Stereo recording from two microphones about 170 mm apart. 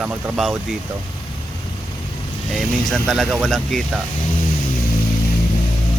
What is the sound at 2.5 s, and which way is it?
Speech, centre (ahead or behind).